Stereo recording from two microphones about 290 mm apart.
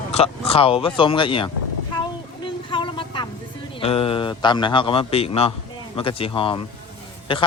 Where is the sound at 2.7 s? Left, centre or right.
Centre.